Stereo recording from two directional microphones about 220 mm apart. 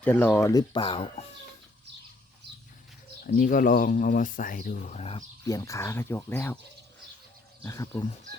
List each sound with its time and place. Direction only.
0.0 s speech: 10° left (ahead or behind); by 1.2 s 25° left (ahead or behind)
3.2 s speech: 35° left (ahead or behind)
5.5 s speech: 15° left (ahead or behind)
7.6 s speech: 15° left (ahead or behind)